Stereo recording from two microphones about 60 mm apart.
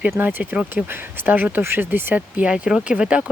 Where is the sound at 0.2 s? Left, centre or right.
Right.